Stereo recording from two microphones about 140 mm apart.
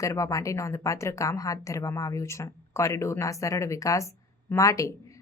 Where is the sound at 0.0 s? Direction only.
20° left (ahead or behind).